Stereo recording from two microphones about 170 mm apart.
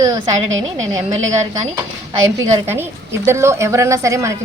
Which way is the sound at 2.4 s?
15° right (ahead or behind).